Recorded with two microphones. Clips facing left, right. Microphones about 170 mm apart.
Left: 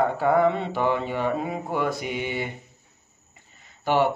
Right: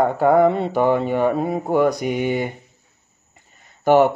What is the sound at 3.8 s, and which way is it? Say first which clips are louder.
Speech: right 8 dB; 45° right (ahead or behind).